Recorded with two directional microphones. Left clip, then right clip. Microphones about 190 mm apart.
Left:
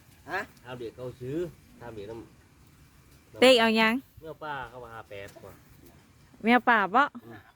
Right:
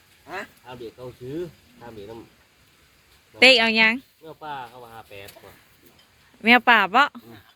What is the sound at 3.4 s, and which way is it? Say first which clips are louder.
Speech: right 5 dB; 25° left (ahead or behind).